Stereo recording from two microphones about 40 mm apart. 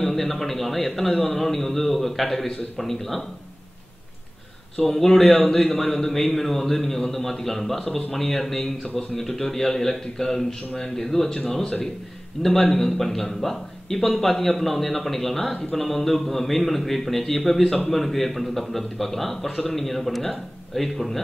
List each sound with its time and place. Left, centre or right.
0.0 s speech: centre
4.8 s speech: centre
11.6 s speech: left
12.4 s speech: centre